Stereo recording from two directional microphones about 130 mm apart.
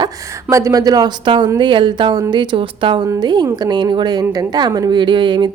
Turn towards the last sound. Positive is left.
turn(degrees=-35)  # may be behind; listen again after turning